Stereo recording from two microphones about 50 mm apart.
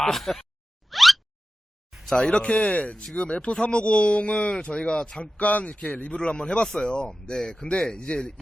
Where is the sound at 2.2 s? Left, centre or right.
Centre.